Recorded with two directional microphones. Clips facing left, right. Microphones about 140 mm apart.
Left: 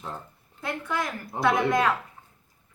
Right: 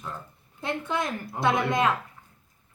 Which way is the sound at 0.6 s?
25° right (ahead or behind).